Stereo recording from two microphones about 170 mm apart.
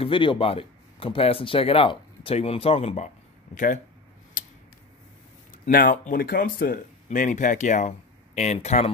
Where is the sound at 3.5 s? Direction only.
50° left (ahead or behind).